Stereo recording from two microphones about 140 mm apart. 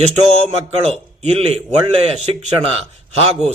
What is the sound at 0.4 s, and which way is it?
A man's voice, 50° right (ahead or behind).